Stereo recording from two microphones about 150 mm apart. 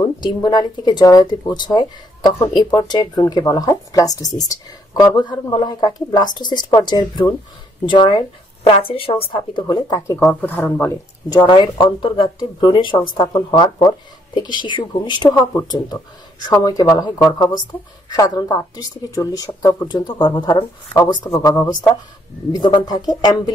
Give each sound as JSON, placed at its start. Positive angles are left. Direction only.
{"t": 0.0, "sound": "speech", "side_deg": 30}
{"t": 10.1, "sound": "speech", "side_deg": 10}
{"t": 11.2, "sound": "speech", "side_deg": 30}